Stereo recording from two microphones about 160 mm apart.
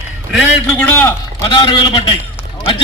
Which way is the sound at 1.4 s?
30° left (ahead or behind).